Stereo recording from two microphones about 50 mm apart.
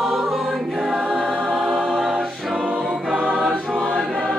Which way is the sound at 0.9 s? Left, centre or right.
Right.